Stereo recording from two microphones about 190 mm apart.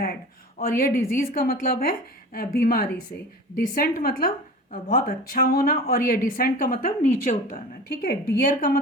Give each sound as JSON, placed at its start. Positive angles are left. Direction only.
{"t": 0.6, "sound": "a woman's voice", "side_deg": 50}